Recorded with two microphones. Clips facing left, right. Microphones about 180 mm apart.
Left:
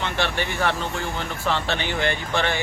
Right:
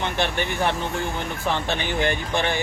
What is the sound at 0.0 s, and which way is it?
Speech, 15° right (ahead or behind).